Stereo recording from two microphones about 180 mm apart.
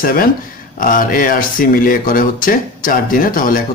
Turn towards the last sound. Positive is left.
turn(degrees=50)  # may be behind; listen again after turning